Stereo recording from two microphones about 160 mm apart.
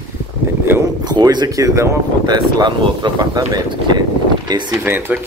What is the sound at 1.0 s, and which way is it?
Speech, 25° right (ahead or behind).